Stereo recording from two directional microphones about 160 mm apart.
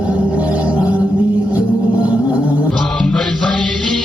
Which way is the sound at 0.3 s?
10° right (ahead or behind).